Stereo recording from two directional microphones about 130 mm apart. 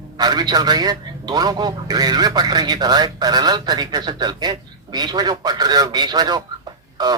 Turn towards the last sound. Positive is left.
turn(degrees=-30)  # may be behind; listen again after turning